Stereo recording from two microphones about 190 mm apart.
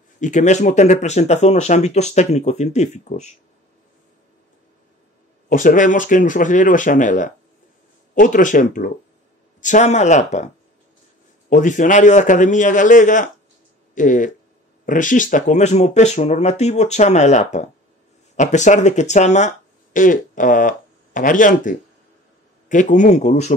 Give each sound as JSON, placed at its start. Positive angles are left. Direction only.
{"t": 0.2, "sound": "speech", "side_deg": 40}
{"t": 5.5, "sound": "a man's voice", "side_deg": 45}
{"t": 11.4, "sound": "a man's voice", "side_deg": 45}